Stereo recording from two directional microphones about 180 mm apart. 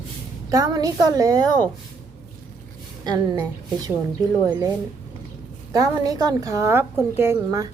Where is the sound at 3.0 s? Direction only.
20° right (ahead or behind).